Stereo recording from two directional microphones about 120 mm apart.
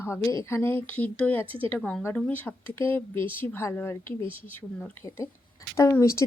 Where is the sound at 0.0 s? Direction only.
25° left (ahead or behind).